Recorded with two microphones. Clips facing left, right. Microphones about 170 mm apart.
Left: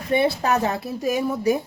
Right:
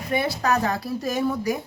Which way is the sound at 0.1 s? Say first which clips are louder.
Left 3 dB; 25° left (ahead or behind).